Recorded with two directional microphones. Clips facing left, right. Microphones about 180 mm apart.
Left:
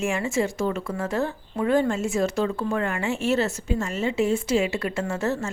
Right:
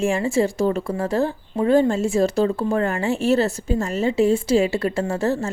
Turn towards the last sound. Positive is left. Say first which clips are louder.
# right 4 dB
turn(degrees=-35)  # may be behind; listen again after turning